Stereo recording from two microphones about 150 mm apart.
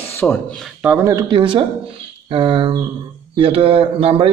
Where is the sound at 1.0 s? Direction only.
25° right (ahead or behind).